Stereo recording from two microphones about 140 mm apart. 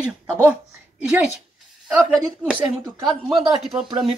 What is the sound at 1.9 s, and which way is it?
Speech, 5° right (ahead or behind).